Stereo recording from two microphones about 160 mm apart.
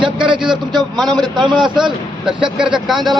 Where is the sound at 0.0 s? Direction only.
30° right (ahead or behind).